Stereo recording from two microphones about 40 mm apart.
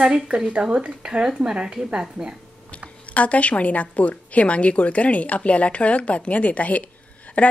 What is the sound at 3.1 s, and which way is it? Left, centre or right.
A woman's voice, left.